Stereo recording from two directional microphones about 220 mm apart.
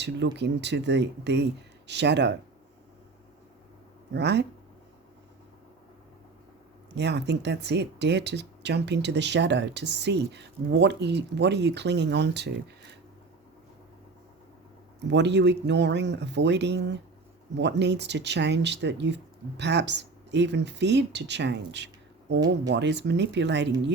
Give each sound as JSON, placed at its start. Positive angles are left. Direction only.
{"t": 0.0, "sound": "speech", "side_deg": -50}
{"t": 4.1, "sound": "speech", "side_deg": -50}
{"t": 6.9, "sound": "speech", "side_deg": -50}
{"t": 15.0, "sound": "speech", "side_deg": -50}